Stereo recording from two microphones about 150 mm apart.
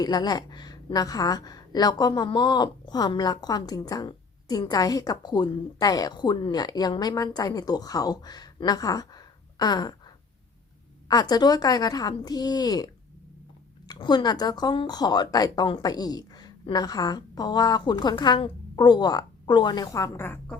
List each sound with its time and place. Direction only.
0.0 s a woman's voice: 25° left (ahead or behind)
11.1 s a woman's voice: 25° left (ahead or behind)